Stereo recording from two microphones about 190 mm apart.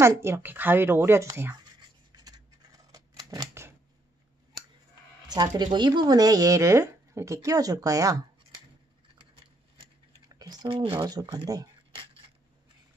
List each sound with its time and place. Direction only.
0.0 s a sound: 15° right (ahead or behind)
5.3 s speech: 20° right (ahead or behind)
10.2 s speech: 20° right (ahead or behind)